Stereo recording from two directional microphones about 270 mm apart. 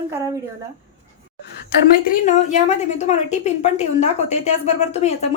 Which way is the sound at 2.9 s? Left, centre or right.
Left.